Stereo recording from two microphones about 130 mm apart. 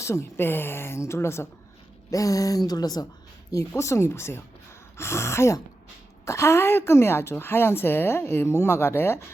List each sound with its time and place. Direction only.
0.0 s a woman's voice: 20° left (ahead or behind)